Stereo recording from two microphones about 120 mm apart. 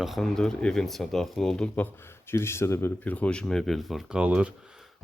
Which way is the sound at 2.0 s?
20° left (ahead or behind).